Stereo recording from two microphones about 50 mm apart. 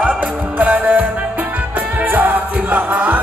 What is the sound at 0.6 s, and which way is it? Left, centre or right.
Music, right.